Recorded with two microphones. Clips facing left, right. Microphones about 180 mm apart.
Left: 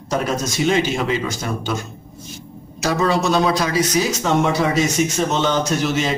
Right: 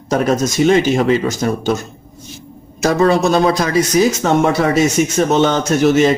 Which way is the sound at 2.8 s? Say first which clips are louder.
Right 6 dB; 50° right (ahead or behind).